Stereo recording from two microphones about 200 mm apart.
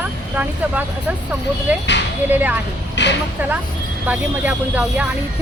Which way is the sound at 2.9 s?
60° left (ahead or behind).